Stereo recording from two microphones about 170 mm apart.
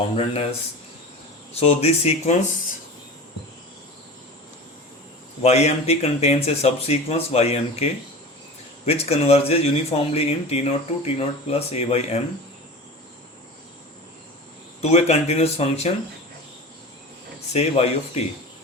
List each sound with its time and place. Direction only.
0.0 s speech: 35° left (ahead or behind)
1.5 s speech: 35° left (ahead or behind)
5.4 s speech: 40° left (ahead or behind)
8.9 s speech: 35° left (ahead or behind)
14.8 s speech: 40° left (ahead or behind)
17.5 s speech: 40° left (ahead or behind)